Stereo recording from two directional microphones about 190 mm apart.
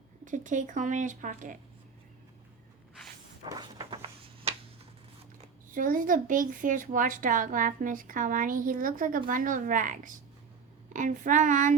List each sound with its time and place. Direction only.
0.3 s speech: 40° right (ahead or behind)
3.4 s a sound: 20° right (ahead or behind)
5.7 s speech: 45° right (ahead or behind)